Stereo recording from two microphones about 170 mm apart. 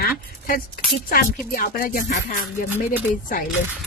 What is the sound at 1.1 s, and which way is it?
Speech, 55° left (ahead or behind).